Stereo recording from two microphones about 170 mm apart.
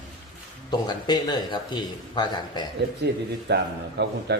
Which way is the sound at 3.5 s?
75° right (ahead or behind).